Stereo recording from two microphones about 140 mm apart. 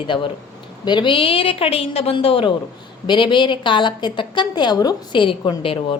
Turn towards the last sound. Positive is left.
turn(degrees=40)  # may be behind; listen again after turning